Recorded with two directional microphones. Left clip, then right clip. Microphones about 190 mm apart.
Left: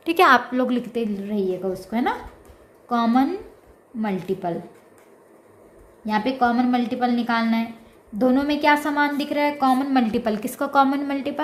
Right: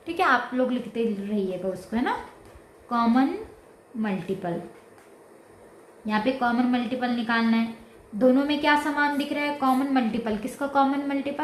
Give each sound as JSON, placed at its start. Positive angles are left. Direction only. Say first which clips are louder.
{"t": 0.0, "sound": "a woman's voice", "louder": "left 7 dB", "side_deg": 55}
{"t": 6.1, "sound": "a woman's voice", "louder": "left 4 dB", "side_deg": 35}